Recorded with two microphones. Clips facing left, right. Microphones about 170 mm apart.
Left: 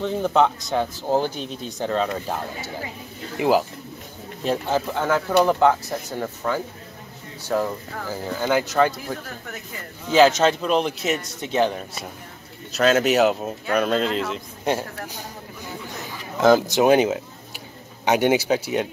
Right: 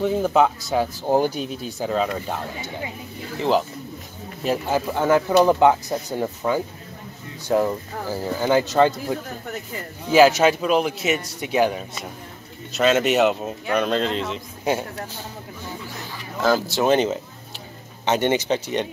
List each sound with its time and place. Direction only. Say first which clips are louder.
0.0 s speech: right 1 dB; 5° right (ahead or behind)
4.4 s speech: even; 5° right (ahead or behind)
16.3 s speech: left 4 dB; 20° left (ahead or behind)